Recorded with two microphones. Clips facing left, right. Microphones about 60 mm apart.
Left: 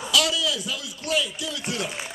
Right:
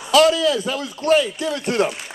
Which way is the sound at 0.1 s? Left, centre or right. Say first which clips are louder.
Right 10 dB; right.